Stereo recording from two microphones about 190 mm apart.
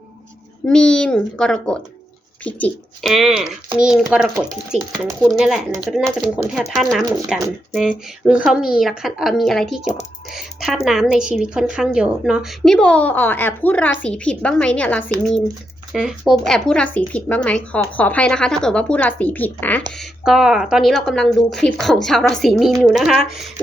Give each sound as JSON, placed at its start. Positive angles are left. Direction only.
{"t": 0.6, "sound": "a woman's voice", "side_deg": 5}
{"t": 20.0, "sound": "a woman's voice", "side_deg": 0}